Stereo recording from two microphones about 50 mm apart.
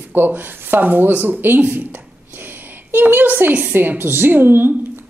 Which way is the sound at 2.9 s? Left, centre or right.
Right.